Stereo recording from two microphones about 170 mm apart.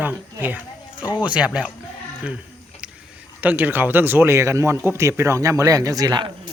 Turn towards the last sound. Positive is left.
turn(degrees=-25)  # may be behind; listen again after turning